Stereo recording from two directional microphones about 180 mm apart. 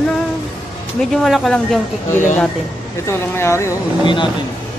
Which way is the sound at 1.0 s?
Centre (ahead or behind).